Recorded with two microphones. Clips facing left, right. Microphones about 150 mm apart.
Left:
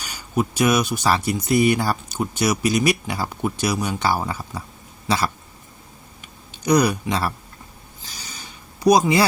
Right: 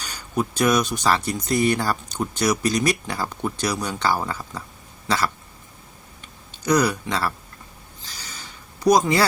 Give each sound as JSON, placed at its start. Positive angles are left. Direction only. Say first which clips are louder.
{"t": 0.0, "sound": "speech", "louder": "left 2 dB", "side_deg": 10}
{"t": 6.5, "sound": "speech", "louder": "left 2 dB", "side_deg": 15}
{"t": 8.2, "sound": "a sound", "louder": "left 1 dB", "side_deg": 15}